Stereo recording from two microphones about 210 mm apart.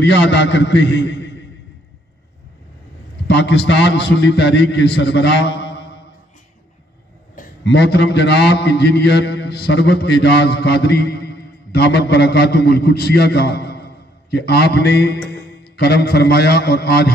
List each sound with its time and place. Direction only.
0.0 s a man's voice: 55° left (ahead or behind)
3.3 s a man's voice: 55° left (ahead or behind)
7.6 s a man's voice: 55° left (ahead or behind)
15.1 s music: 5° left (ahead or behind)
15.7 s a man's voice: 50° left (ahead or behind)